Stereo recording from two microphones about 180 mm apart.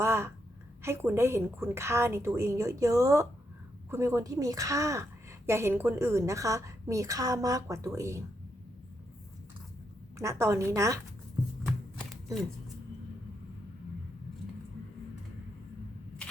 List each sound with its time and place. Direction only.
0.0 s a woman's voice: 15° right (ahead or behind)
10.2 s a woman's voice: 15° right (ahead or behind)
11.6 s chopping: centre (ahead or behind)